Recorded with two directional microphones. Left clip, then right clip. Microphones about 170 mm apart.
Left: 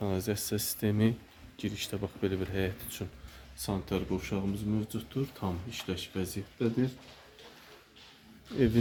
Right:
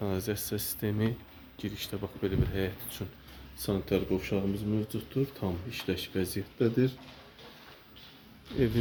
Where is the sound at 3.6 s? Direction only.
15° left (ahead or behind).